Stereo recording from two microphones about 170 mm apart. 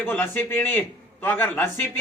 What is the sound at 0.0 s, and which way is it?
A man's voice, 10° left (ahead or behind).